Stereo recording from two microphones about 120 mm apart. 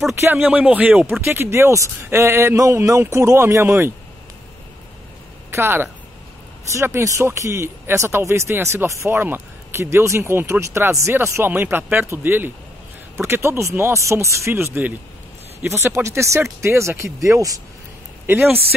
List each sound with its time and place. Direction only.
0.1 s speech: 20° right (ahead or behind)
5.5 s speech: 20° right (ahead or behind)